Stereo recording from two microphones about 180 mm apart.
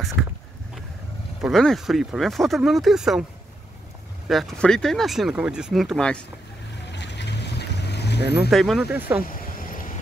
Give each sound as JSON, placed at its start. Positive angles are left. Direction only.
{"t": 1.4, "sound": "speech", "side_deg": 0}
{"t": 4.3, "sound": "speech", "side_deg": 0}
{"t": 6.9, "sound": "boat", "side_deg": 75}
{"t": 8.4, "sound": "speech", "side_deg": 0}
{"t": 9.3, "sound": "vehicle", "side_deg": 50}